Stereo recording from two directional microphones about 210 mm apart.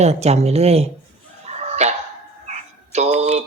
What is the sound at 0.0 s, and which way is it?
Speech, 30° right (ahead or behind).